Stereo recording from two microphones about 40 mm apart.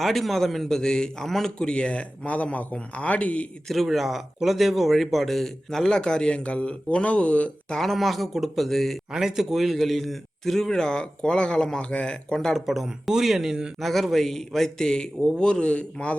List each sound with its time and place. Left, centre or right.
0.0 s a man's voice: centre
1.5 s speech: left
3.8 s speech: centre; by 7.5 s left
7.8 s speech: centre
9.1 s a man's voice: centre
12.6 s speech: centre
13.7 s a man's voice: centre; by 16.1 s left